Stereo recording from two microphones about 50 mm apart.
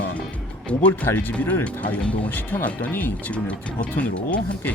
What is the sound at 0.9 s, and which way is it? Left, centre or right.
Speech, left.